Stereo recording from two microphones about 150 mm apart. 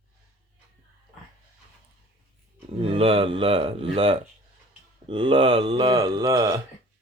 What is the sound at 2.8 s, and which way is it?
Speech, 40° right (ahead or behind).